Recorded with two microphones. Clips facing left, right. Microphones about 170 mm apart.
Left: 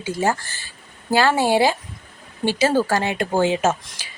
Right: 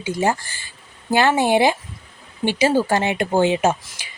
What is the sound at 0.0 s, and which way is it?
Speech, 15° right (ahead or behind).